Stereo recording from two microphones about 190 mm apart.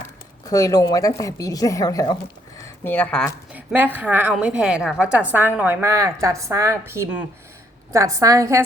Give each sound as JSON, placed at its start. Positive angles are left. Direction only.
{"t": 0.4, "sound": "a woman's voice", "side_deg": 20}
{"t": 3.5, "sound": "a woman's voice", "side_deg": -10}